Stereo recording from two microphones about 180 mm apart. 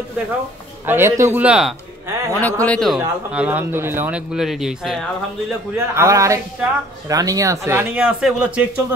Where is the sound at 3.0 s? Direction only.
10° right (ahead or behind).